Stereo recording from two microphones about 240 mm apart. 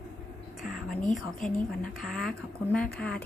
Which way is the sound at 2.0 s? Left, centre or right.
Centre.